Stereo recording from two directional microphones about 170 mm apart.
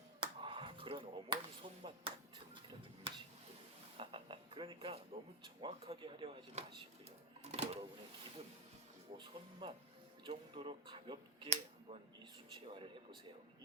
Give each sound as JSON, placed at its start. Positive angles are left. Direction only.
{"t": 0.2, "sound": "a sound", "side_deg": -30}
{"t": 3.9, "sound": "speech", "side_deg": -30}
{"t": 7.4, "sound": "sewing machine", "side_deg": -40}
{"t": 9.1, "sound": "speech", "side_deg": -30}